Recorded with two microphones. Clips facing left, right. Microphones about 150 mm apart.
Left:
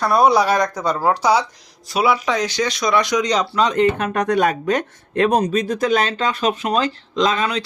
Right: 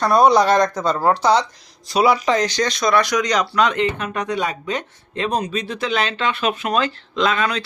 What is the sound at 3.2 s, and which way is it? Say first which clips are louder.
Speech: even; 30° left (ahead or behind).